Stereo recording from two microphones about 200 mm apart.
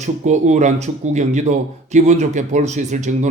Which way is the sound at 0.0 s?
35° right (ahead or behind).